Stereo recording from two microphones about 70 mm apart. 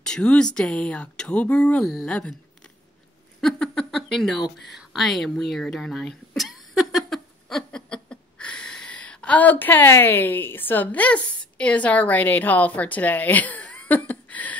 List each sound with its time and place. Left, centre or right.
0.0 s speech: centre
3.3 s a sound: centre
4.6 s throat clearing: centre; by 14.6 s left